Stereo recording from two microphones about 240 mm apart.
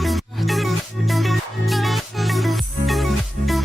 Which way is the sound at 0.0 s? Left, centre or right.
Centre.